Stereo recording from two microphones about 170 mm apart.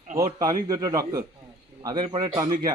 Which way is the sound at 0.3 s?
25° right (ahead or behind).